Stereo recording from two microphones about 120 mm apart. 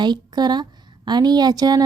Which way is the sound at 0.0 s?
35° right (ahead or behind).